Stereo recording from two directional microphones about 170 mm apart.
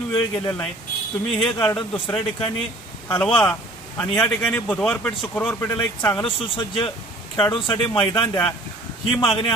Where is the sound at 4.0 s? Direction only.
10° left (ahead or behind).